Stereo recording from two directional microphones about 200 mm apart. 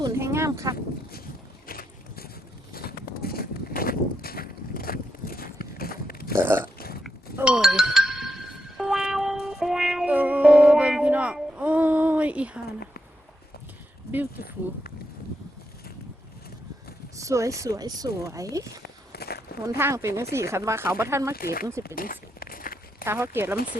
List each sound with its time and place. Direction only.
0.0 s a sound: 15° right (ahead or behind)
1.6 s boat: 45° left (ahead or behind)
2.7 s a sound: 50° left (ahead or behind)
6.3 s a sound: 10° right (ahead or behind)
6.7 s burping: 50° left (ahead or behind)
7.3 s music: 5° right (ahead or behind)
17.2 s speech: 15° right (ahead or behind)
19.1 s walk: 50° left (ahead or behind)
19.6 s speech: 15° right (ahead or behind)
21.3 s speech: 50° left (ahead or behind)
21.8 s a sound: 45° left (ahead or behind)
23.0 s speech: 10° right (ahead or behind)